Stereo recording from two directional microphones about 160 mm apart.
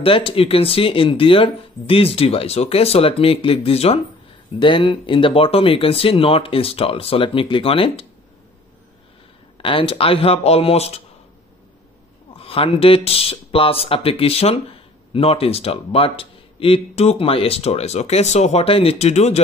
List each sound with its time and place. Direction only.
0.0 s a man's voice: 35° left (ahead or behind)
9.6 s a man's voice: 35° left (ahead or behind)
12.4 s a man's voice: 35° left (ahead or behind)